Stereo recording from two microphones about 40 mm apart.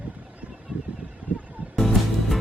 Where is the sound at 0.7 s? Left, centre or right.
Right.